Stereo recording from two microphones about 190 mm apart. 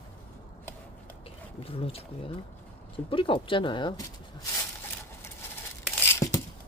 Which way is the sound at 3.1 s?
25° left (ahead or behind).